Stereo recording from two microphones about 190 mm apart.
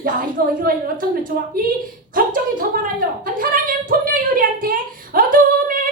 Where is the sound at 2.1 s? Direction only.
45° right (ahead or behind).